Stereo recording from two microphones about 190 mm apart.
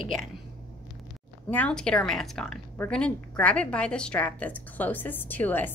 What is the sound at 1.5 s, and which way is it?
A woman's voice, 5° left (ahead or behind).